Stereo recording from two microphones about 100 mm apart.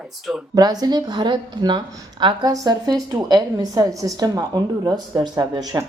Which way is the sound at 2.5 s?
40° right (ahead or behind).